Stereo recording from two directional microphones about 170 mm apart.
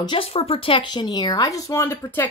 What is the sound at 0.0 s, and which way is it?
Speech, 30° left (ahead or behind).